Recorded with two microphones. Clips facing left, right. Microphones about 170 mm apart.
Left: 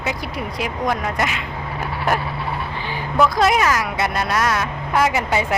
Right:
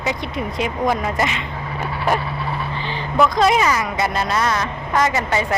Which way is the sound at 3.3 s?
5° left (ahead or behind).